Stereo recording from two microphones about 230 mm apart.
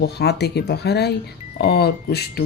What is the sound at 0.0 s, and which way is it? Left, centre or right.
Speech, left.